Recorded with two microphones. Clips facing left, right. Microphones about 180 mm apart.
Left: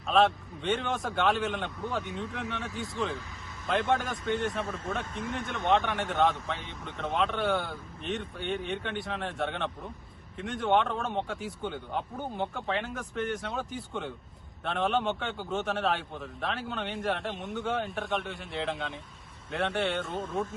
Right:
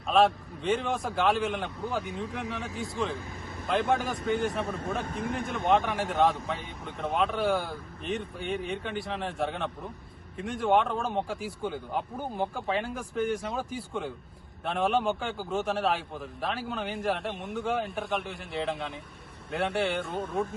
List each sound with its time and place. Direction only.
0.1 s speech: centre (ahead or behind)
5.7 s speech: centre (ahead or behind)